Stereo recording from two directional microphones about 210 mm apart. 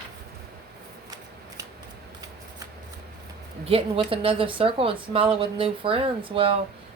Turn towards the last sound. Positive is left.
turn(degrees=-25)  # may be behind; listen again after turning